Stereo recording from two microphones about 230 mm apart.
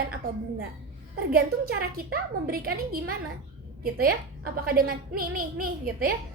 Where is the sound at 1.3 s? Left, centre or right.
Right.